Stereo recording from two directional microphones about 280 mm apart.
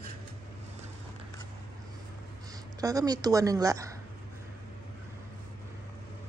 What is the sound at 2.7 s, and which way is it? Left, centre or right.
A woman's voice, centre.